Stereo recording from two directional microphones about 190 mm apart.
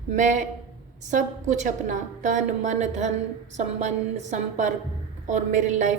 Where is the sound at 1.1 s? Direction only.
40° right (ahead or behind).